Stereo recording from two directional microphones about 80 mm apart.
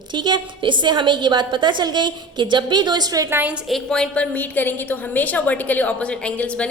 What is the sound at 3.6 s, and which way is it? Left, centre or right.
Speech, centre.